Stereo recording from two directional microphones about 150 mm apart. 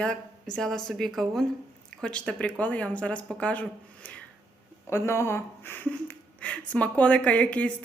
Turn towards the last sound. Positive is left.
turn(degrees=10)  # may be behind; listen again after turning